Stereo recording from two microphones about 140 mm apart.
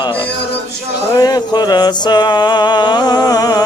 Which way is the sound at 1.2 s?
30° left (ahead or behind).